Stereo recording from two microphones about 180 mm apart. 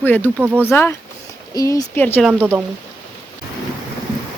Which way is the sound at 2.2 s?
Centre (ahead or behind).